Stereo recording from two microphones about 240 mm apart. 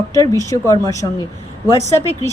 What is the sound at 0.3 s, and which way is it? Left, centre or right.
Speech, centre.